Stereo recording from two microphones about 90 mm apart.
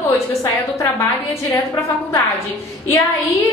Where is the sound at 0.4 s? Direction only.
35° left (ahead or behind).